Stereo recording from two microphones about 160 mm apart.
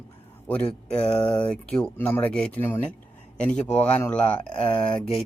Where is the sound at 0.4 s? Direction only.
5° left (ahead or behind).